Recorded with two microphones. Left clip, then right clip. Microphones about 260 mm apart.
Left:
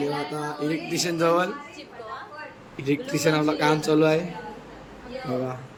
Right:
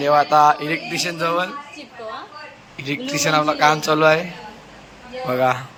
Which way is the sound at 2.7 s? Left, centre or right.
Centre.